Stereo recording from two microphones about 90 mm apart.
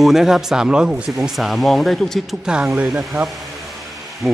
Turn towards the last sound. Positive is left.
turn(degrees=-5)  # may be behind; listen again after turning